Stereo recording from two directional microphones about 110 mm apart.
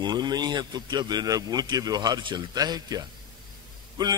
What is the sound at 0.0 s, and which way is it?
Speech, 40° right (ahead or behind).